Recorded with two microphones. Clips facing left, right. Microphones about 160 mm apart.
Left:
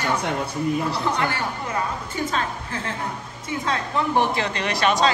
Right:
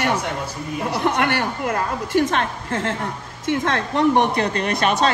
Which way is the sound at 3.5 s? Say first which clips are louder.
Right 4 dB; 70° right (ahead or behind).